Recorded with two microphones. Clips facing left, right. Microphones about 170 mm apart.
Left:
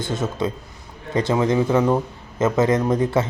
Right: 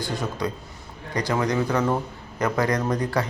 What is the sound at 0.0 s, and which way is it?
Speech, 20° left (ahead or behind).